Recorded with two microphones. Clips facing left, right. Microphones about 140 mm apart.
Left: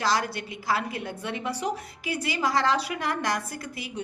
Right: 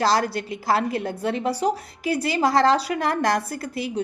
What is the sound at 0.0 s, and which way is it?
A woman's voice, 35° right (ahead or behind).